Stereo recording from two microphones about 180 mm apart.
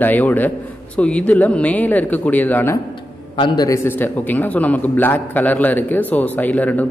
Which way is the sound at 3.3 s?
25° left (ahead or behind).